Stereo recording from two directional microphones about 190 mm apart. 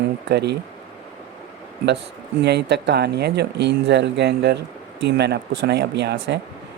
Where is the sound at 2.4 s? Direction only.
60° right (ahead or behind).